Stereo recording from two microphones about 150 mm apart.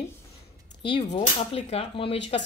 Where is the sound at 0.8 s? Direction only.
35° left (ahead or behind).